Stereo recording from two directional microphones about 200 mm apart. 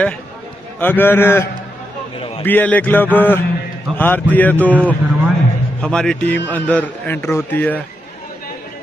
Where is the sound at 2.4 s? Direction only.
10° left (ahead or behind).